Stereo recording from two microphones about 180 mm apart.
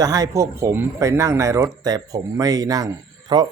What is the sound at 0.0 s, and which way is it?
A man's voice, 20° right (ahead or behind).